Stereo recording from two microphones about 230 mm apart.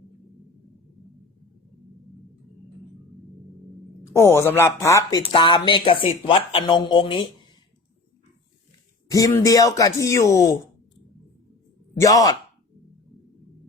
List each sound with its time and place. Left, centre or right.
4.0 s speech: centre
9.0 s speech: centre
11.9 s speech: centre